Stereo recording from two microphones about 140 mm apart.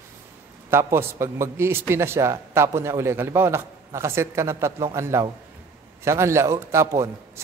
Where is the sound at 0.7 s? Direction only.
15° right (ahead or behind).